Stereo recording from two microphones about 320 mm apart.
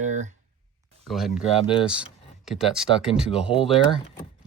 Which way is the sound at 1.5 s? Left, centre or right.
Centre.